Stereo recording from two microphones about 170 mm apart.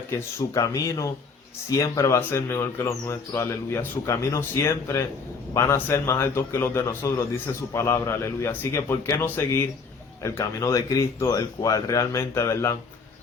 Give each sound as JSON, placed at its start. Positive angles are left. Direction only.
{"t": 0.1, "sound": "speech", "side_deg": 20}